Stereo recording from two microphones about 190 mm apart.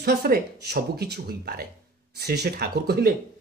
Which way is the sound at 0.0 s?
55° right (ahead or behind).